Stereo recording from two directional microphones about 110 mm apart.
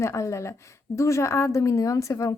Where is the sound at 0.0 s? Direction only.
25° left (ahead or behind).